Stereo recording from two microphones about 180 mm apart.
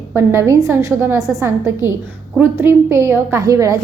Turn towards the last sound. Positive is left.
turn(degrees=-20)  # may be behind; listen again after turning